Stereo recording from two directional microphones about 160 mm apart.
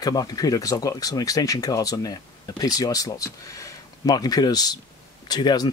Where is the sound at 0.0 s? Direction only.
25° left (ahead or behind).